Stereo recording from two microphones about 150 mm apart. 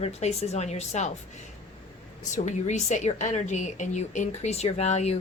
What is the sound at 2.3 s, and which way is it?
A woman's voice, 50° left (ahead or behind).